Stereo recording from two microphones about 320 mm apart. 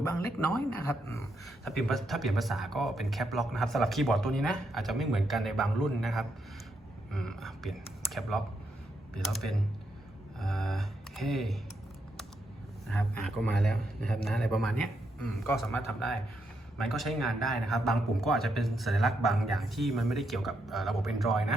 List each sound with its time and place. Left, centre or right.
0.0 s speech: centre
12.9 s speech: centre